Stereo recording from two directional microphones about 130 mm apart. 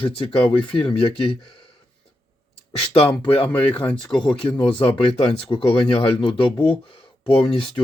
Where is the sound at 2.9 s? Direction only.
45° left (ahead or behind).